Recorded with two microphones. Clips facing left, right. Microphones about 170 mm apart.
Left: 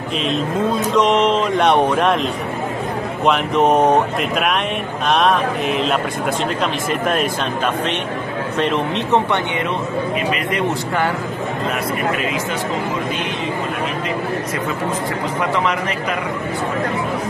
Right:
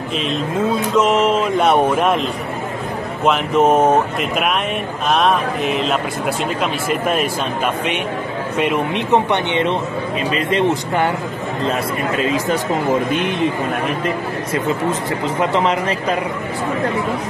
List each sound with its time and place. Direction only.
0.9 s a sound: 5° right (ahead or behind)
3.3 s a sound: centre (ahead or behind)
6.6 s speech: 5° right (ahead or behind)
8.5 s speech: 10° right (ahead or behind)
12.2 s speech: 35° right (ahead or behind)
13.1 s a man's voice: 55° right (ahead or behind)
15.5 s a man's voice: 30° right (ahead or behind)